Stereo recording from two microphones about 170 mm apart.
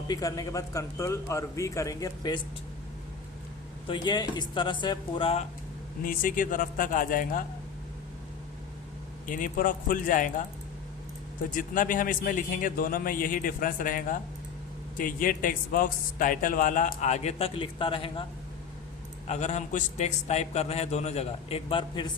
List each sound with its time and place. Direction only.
0.1 s speech: 20° left (ahead or behind)
3.8 s speech: 25° left (ahead or behind)
6.0 s a man's voice: 55° left (ahead or behind)
9.2 s a man's voice: 50° left (ahead or behind)
11.5 s a man's voice: 50° left (ahead or behind); by 18.3 s 30° left (ahead or behind)
19.3 s a man's voice: 45° left (ahead or behind)